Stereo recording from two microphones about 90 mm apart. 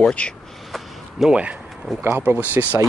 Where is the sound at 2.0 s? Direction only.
20° right (ahead or behind).